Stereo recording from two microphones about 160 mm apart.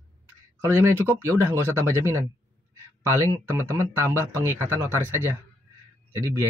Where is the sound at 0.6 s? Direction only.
20° right (ahead or behind).